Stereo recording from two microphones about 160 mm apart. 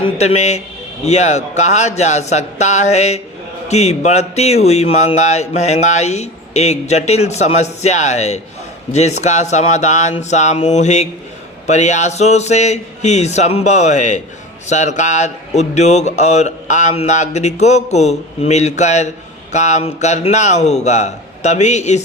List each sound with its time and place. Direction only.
0.0 s speech: 40° left (ahead or behind)